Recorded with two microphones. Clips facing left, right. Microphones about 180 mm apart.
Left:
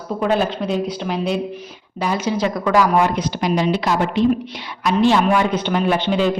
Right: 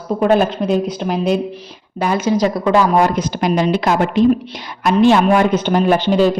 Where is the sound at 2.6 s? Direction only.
30° right (ahead or behind).